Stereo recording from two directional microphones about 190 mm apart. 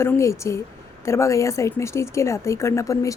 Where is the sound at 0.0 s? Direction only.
15° left (ahead or behind).